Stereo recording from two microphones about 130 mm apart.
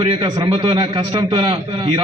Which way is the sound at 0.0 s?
35° right (ahead or behind).